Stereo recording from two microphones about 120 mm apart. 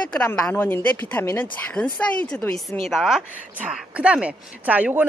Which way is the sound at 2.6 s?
Centre (ahead or behind).